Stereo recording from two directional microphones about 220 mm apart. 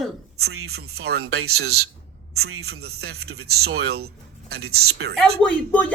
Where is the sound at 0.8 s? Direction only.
80° right.